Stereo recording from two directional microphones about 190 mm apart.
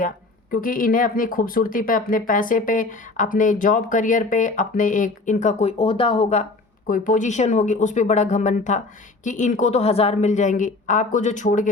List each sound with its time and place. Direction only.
0.5 s speech: 50° left (ahead or behind); by 6.4 s 30° left (ahead or behind)
6.8 s a woman's voice: 45° left (ahead or behind)